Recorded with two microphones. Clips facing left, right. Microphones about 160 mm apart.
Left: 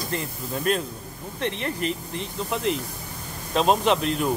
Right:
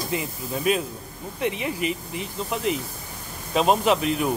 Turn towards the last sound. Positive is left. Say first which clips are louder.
# right 1 dB
turn(degrees=-5)  # may be behind; listen again after turning